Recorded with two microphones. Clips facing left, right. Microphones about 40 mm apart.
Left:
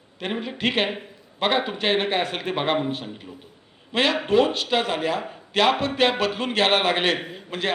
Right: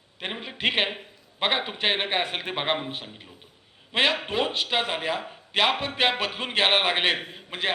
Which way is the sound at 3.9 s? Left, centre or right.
Centre.